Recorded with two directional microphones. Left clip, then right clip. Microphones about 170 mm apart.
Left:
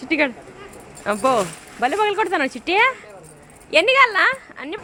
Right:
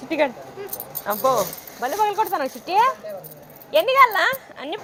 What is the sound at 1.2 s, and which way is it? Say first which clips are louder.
Speech: left 1 dB; 60° left (ahead or behind).